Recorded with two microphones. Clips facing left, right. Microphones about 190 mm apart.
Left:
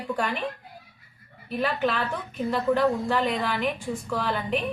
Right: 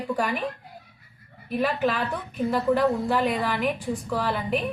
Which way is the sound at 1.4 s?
10° right (ahead or behind).